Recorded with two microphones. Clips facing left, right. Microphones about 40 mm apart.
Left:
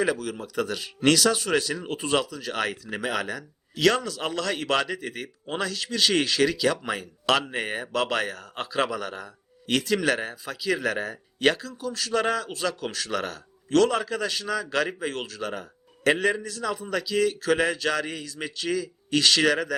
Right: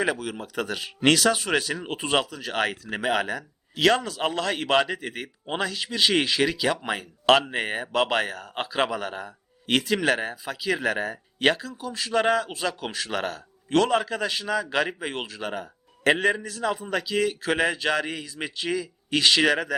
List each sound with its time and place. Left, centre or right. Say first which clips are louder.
0.0 s speech: even; right